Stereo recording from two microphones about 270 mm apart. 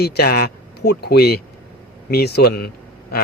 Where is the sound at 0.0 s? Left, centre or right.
Left.